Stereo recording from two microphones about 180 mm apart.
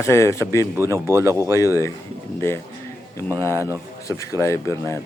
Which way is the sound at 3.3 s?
15° right (ahead or behind).